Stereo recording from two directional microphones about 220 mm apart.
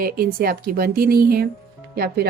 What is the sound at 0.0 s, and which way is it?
A woman's voice, 40° right (ahead or behind).